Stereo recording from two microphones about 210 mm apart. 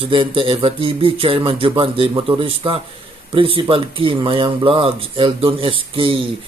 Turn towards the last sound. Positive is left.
turn(degrees=-25)  # may be behind; listen again after turning